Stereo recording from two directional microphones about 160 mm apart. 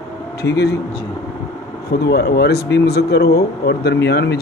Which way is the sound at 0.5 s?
90° left.